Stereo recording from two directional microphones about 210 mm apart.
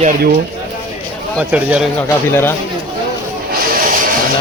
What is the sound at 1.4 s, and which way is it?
Speech, 5° right (ahead or behind).